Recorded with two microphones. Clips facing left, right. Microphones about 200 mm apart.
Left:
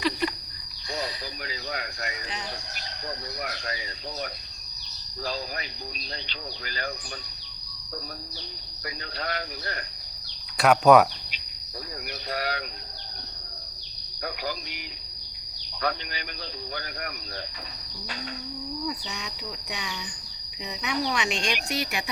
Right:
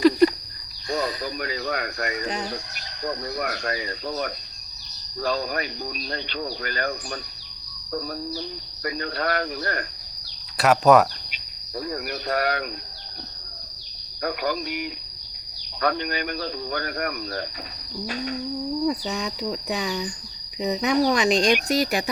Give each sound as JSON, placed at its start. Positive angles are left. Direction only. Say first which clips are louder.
{"t": 0.9, "sound": "speech", "louder": "right 7 dB", "side_deg": -50}
{"t": 8.8, "sound": "speech", "louder": "right 8 dB", "side_deg": -60}
{"t": 10.6, "sound": "speech", "louder": "right 1 dB", "side_deg": 0}
{"t": 12.3, "sound": "speech", "louder": "right 6 dB", "side_deg": -55}
{"t": 14.2, "sound": "speech", "louder": "right 7 dB", "side_deg": -55}
{"t": 18.9, "sound": "speech", "louder": "right 9 dB", "side_deg": -40}